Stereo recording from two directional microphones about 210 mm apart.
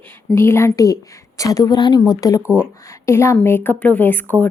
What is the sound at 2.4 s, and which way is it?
Speech, 5° right (ahead or behind).